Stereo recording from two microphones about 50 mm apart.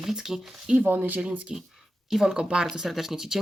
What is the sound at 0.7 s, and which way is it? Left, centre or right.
Speech, right.